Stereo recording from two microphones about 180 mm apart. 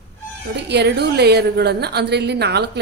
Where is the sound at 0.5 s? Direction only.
70° right (ahead or behind).